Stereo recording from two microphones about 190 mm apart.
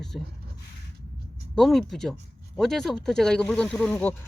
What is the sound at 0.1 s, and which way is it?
Speech, centre (ahead or behind).